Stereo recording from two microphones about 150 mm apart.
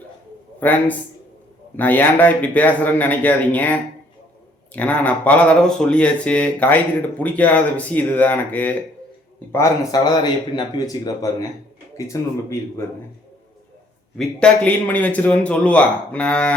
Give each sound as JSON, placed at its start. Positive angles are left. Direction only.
{"t": 0.6, "sound": "a man's voice", "side_deg": 10}
{"t": 14.2, "sound": "a man's voice", "side_deg": 5}